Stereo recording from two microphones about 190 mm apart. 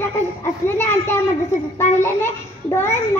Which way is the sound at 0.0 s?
15° left (ahead or behind).